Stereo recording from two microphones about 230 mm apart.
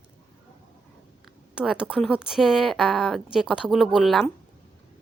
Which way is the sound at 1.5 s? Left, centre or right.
Centre.